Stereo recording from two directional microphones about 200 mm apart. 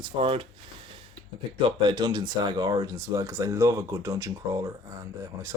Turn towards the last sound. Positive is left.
turn(degrees=-15)  # may be behind; listen again after turning